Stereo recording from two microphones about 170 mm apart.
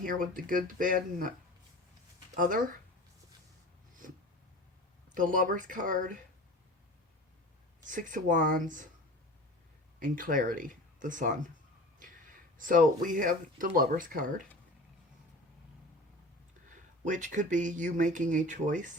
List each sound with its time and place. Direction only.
0.0 s speech: 55° right (ahead or behind)
5.1 s speech: 50° right (ahead or behind)
7.9 s speech: 50° right (ahead or behind)
10.0 s speech: 55° right (ahead or behind)
17.0 s speech: 45° right (ahead or behind)